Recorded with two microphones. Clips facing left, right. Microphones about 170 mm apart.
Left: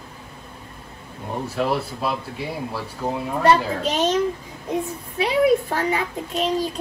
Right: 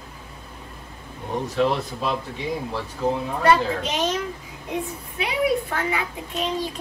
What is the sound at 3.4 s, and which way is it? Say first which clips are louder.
A child's voice: left 1 dB; 35° left (ahead or behind).